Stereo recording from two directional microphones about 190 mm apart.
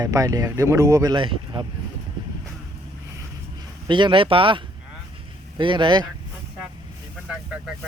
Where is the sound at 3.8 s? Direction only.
25° right (ahead or behind).